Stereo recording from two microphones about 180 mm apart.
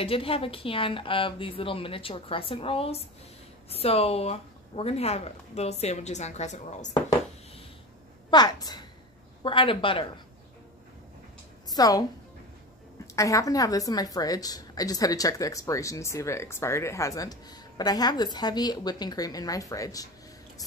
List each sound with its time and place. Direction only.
0.0 s speech: 30° left (ahead or behind)
8.3 s a woman's voice: 25° left (ahead or behind)
11.7 s a woman's voice: 20° left (ahead or behind)